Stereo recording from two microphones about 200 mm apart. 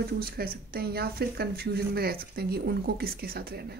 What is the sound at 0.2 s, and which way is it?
Speech, 50° right (ahead or behind).